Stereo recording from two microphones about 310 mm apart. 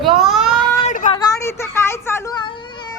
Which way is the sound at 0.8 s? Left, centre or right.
Left.